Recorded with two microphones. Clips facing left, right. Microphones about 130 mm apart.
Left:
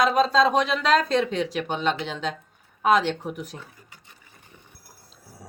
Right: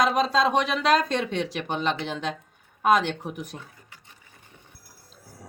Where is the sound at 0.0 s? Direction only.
5° right (ahead or behind).